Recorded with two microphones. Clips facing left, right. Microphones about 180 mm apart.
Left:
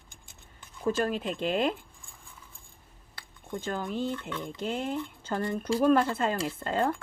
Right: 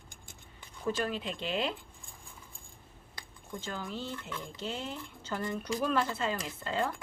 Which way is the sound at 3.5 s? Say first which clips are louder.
Left 7 dB; 50° left (ahead or behind).